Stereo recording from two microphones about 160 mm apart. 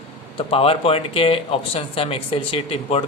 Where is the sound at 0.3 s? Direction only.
35° left (ahead or behind).